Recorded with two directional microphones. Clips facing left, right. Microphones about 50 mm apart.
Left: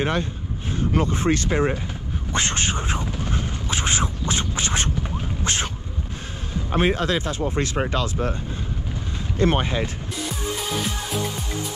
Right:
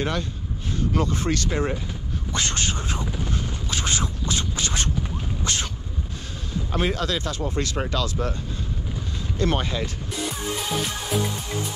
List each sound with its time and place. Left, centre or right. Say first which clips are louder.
0.0 s speech: left 3 dB; left
5.4 s a sound: left 2 dB; left
6.7 s speech: left 4 dB; left
9.4 s speech: left 4 dB; left